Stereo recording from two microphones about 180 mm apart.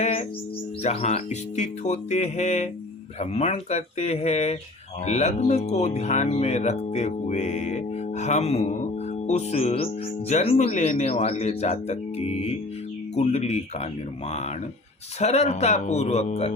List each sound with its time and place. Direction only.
0.0 s music: 35° left (ahead or behind)
0.8 s speech: 35° left (ahead or behind)
15.2 s speech: 35° left (ahead or behind)